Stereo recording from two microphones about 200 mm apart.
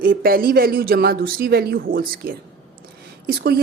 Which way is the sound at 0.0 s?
45° right (ahead or behind).